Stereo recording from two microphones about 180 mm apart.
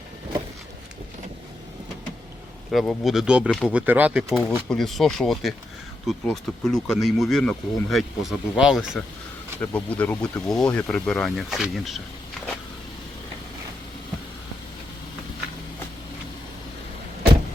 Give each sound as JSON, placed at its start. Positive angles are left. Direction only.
{"t": 2.7, "sound": "speech", "side_deg": 0}
{"t": 9.6, "sound": "speech", "side_deg": 10}